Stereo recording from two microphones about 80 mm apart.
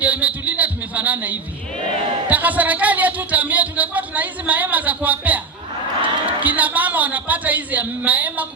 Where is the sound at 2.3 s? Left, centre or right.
Centre.